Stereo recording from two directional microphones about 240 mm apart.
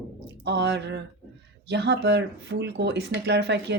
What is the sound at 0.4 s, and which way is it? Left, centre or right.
Speech, right.